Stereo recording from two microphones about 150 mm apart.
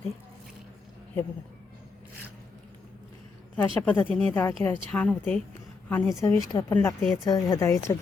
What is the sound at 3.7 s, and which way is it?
A woman's voice, 10° left (ahead or behind).